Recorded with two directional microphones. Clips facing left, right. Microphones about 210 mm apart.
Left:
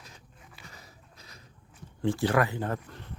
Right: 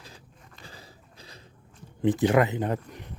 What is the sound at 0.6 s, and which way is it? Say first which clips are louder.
Dog: right 5 dB; 30° right (ahead or behind).